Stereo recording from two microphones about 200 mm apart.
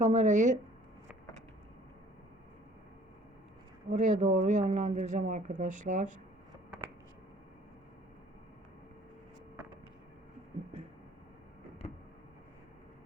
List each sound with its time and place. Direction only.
0.0 s speech: 35° right (ahead or behind)
3.8 s speech: 35° right (ahead or behind)